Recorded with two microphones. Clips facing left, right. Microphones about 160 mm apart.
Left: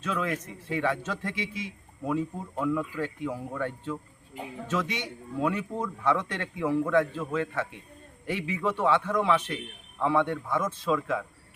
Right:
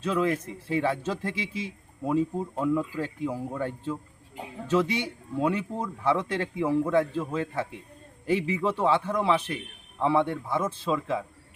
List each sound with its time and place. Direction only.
0.0 s a man's voice: 30° right (ahead or behind)